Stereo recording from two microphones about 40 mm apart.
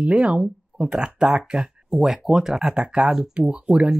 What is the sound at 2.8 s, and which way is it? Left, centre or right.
Speech, right.